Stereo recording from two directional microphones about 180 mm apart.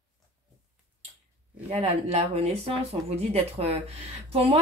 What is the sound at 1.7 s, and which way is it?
Speech, 35° right (ahead or behind).